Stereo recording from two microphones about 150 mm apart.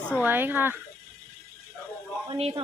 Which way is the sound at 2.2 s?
35° right (ahead or behind).